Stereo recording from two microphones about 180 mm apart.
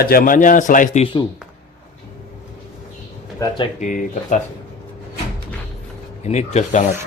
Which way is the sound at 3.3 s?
20° left (ahead or behind).